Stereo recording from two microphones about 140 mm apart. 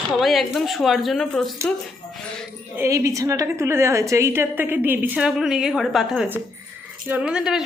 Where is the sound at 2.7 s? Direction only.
20° right (ahead or behind).